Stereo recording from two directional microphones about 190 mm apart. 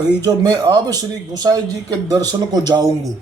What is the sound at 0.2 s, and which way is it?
Speech, 20° right (ahead or behind).